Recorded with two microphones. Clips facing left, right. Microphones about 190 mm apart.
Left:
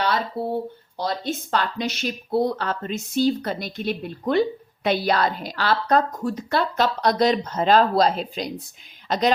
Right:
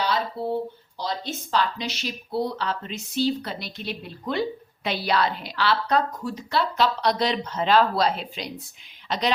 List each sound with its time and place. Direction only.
0.4 s speech: 55° left (ahead or behind)